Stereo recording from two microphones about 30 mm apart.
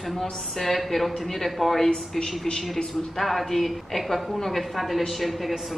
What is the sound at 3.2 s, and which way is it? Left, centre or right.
A woman's voice, centre.